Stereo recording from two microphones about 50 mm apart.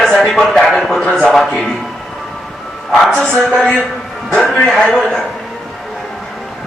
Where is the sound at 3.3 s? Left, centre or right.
Centre.